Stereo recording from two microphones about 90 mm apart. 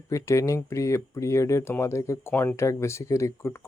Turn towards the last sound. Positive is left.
turn(degrees=30)  # may be behind; listen again after turning